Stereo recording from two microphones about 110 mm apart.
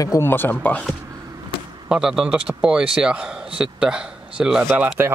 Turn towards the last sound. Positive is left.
turn(degrees=-20)  # may be behind; listen again after turning